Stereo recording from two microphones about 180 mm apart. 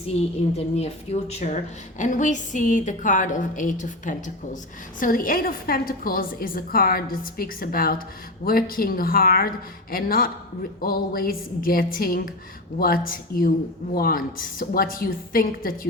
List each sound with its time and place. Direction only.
0.5 s a woman's voice: 35° left (ahead or behind); by 15.9 s 50° left (ahead or behind)